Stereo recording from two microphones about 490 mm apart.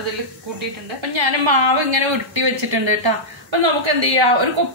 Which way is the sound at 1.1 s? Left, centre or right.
Right.